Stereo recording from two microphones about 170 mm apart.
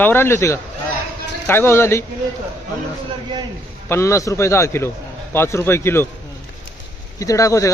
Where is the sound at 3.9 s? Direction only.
15° left (ahead or behind).